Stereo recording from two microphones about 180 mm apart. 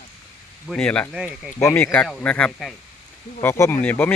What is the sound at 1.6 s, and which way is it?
Speech, 10° left (ahead or behind).